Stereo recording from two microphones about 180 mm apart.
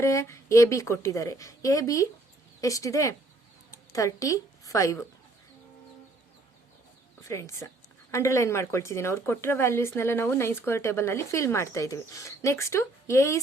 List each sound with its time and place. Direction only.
0.0 s a woman's voice: 15° left (ahead or behind)
7.2 s speech: 15° left (ahead or behind)